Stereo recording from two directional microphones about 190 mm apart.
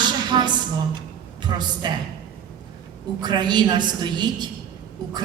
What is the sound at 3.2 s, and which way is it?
A woman's voice, 25° right (ahead or behind).